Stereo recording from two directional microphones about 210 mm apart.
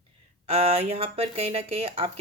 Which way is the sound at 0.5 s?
30° right (ahead or behind).